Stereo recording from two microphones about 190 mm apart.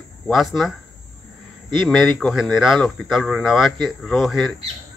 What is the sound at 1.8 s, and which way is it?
Speech, centre (ahead or behind).